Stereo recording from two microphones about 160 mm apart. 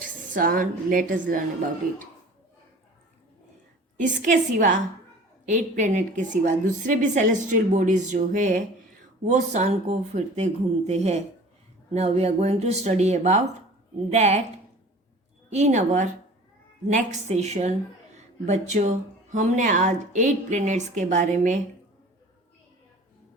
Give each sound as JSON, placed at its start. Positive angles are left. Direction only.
{"t": 0.0, "sound": "a woman's voice", "side_deg": -60}
{"t": 3.9, "sound": "a woman's voice", "side_deg": -50}
{"t": 15.4, "sound": "a woman's voice", "side_deg": -45}